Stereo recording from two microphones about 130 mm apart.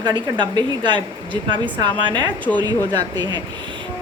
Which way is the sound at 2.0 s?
35° right (ahead or behind).